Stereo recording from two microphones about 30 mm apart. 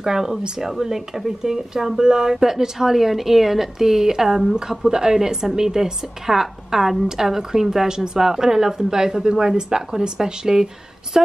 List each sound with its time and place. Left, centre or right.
0.0 s speech: centre
7.9 s speech: right